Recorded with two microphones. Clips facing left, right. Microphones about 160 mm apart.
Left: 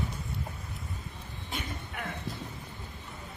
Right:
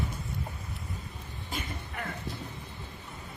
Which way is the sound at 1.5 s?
Centre (ahead or behind).